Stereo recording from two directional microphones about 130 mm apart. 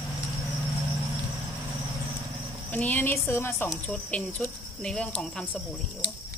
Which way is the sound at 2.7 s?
15° left (ahead or behind).